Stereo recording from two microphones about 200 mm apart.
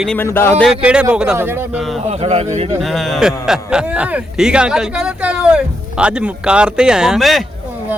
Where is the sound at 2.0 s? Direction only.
30° right (ahead or behind).